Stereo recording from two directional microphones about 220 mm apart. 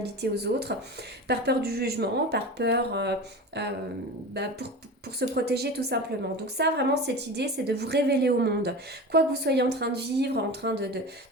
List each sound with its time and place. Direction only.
0.0 s a woman's voice: 50° right (ahead or behind)